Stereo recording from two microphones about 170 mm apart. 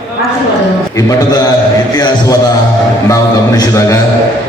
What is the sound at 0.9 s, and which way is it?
Speech, 20° left (ahead or behind).